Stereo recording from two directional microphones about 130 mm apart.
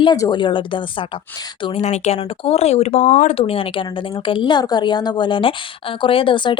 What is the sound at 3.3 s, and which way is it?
A woman's voice, 45° left (ahead or behind).